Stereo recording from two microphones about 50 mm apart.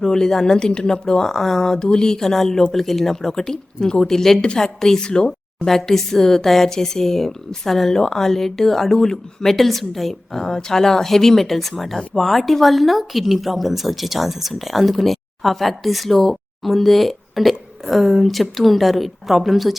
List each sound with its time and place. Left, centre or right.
0.0 s speech: centre